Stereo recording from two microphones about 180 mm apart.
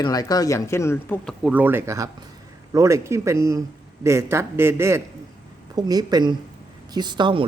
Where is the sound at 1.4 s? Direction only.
10° right (ahead or behind).